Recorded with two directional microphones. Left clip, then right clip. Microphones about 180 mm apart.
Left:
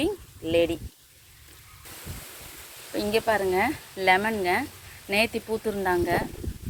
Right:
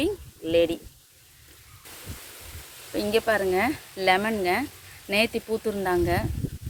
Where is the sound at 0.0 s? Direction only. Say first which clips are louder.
Right 1 dB; 20° right (ahead or behind).